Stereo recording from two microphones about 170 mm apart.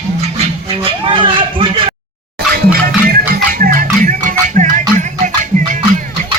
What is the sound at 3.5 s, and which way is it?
Music, 55° right (ahead or behind).